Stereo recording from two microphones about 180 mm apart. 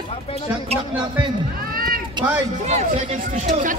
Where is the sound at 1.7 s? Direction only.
55° right (ahead or behind).